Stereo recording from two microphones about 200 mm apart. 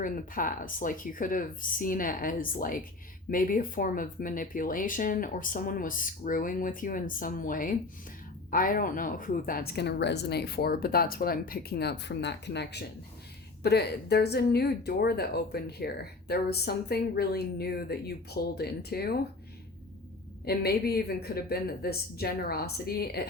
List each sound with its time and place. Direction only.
0.0 s speech: 40° left (ahead or behind)
20.4 s speech: 50° left (ahead or behind)